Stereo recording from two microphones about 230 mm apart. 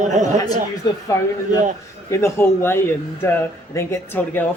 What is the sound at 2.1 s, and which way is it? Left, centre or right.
Speech, centre.